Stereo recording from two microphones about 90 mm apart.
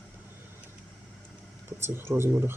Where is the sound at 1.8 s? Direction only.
30° right (ahead or behind).